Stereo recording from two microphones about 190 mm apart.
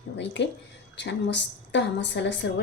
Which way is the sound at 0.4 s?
65° left (ahead or behind).